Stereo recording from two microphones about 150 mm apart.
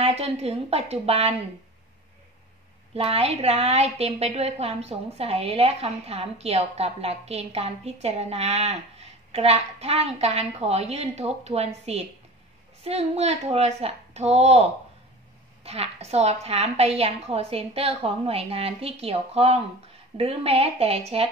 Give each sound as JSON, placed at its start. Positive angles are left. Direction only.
{"t": 0.0, "sound": "a woman's voice", "side_deg": -45}
{"t": 2.9, "sound": "a woman's voice", "side_deg": -40}